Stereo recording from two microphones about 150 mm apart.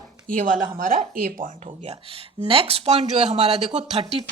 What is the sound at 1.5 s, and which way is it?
Speech, 45° right (ahead or behind).